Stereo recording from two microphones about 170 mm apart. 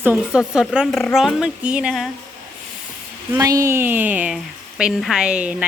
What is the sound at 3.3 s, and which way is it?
Speech, 20° right (ahead or behind).